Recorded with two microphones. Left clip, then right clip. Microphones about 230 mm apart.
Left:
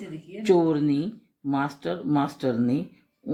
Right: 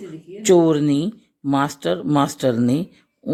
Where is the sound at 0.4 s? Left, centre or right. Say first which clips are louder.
Right 6 dB; right.